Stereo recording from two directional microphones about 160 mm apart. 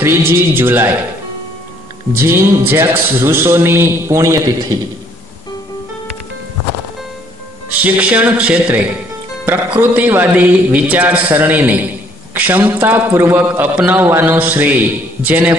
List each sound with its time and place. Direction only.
0.0 s speech: 15° right (ahead or behind)
2.1 s speech: 15° right (ahead or behind)
7.8 s speech: 10° right (ahead or behind)